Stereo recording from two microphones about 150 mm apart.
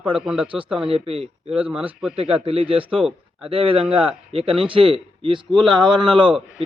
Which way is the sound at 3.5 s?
40° right (ahead or behind).